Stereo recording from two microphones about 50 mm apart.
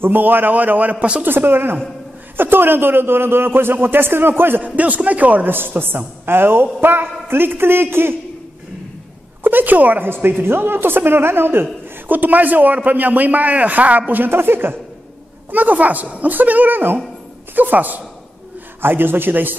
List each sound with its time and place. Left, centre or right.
0.0 s a man's voice: right
1.2 s a woman's voice: right
4.6 s a woman's voice: right
9.4 s a woman's voice: right
10.2 s a woman's voice: right
12.1 s a man's voice: right
15.5 s a man's voice: right
18.8 s a woman's voice: right